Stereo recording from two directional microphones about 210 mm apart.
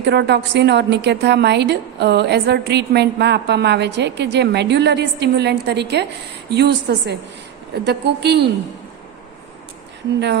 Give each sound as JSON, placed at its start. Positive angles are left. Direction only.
{"t": 0.0, "sound": "a woman's voice", "side_deg": -55}